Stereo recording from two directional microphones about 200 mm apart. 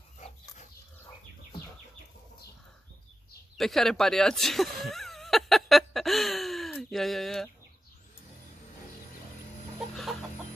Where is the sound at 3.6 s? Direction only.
Centre (ahead or behind).